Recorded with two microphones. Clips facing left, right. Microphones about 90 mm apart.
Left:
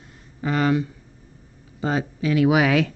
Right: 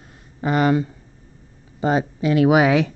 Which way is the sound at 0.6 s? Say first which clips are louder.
Right 2 dB; 45° right (ahead or behind).